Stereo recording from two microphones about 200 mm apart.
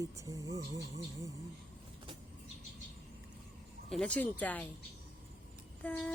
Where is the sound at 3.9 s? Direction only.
5° left (ahead or behind).